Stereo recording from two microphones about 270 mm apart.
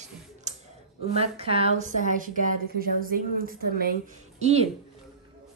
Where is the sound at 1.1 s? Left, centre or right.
Right.